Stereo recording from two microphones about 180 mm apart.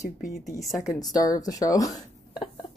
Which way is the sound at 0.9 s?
20° left (ahead or behind).